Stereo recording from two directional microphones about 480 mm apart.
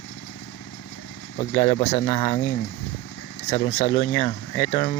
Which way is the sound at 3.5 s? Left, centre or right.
Centre.